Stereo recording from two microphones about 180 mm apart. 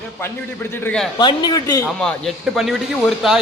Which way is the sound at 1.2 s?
25° left (ahead or behind).